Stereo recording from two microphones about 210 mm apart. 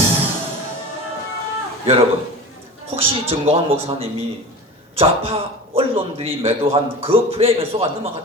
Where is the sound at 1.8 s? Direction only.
25° right (ahead or behind).